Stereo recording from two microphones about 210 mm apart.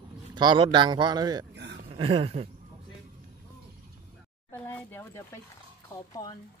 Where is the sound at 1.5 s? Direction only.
55° right (ahead or behind).